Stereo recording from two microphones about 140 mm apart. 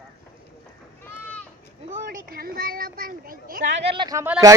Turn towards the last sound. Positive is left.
turn(degrees=-20)  # may be behind; listen again after turning